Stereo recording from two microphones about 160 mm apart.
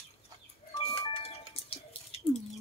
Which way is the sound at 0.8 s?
35° left (ahead or behind).